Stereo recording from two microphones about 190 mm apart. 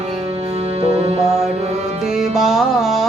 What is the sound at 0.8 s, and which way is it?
Music, 30° right (ahead or behind).